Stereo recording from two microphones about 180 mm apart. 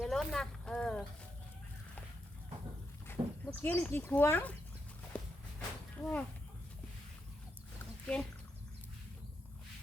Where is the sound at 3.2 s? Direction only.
25° right (ahead or behind).